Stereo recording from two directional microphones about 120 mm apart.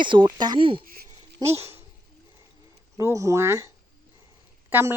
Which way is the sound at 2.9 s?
25° right (ahead or behind).